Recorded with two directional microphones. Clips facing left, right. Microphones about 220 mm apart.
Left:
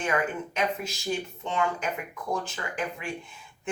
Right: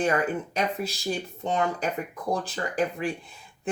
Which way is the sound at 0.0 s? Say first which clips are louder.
Right 3 dB; 35° right (ahead or behind).